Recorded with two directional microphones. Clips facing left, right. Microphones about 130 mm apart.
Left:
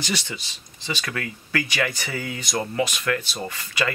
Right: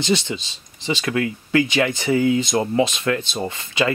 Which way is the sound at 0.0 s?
20° right (ahead or behind).